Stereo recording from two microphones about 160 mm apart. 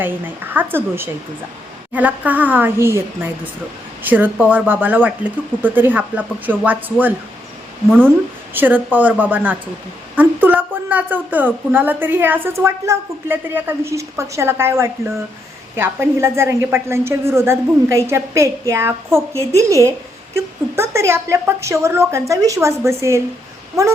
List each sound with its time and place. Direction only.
0.0 s a woman's voice: 10° right (ahead or behind)
7.9 s a woman's voice: 5° left (ahead or behind)
8.5 s a woman's voice: 10° right (ahead or behind)